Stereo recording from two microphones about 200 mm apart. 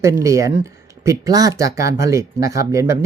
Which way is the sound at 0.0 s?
15° right (ahead or behind).